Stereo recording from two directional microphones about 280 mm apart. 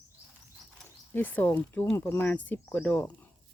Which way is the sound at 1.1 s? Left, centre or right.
Centre.